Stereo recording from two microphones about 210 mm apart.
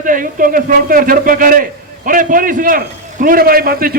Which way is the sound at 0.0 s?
40° right (ahead or behind).